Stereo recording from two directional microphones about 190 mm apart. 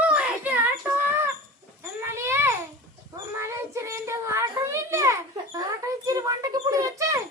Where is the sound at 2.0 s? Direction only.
15° right (ahead or behind).